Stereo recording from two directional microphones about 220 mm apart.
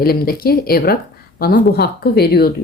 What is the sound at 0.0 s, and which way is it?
Speech, 45° left (ahead or behind).